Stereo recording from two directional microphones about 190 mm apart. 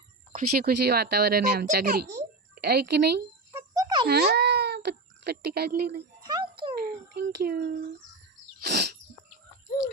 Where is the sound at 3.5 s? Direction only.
20° right (ahead or behind).